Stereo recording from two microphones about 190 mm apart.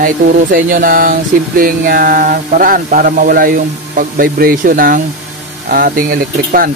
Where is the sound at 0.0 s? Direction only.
45° right (ahead or behind).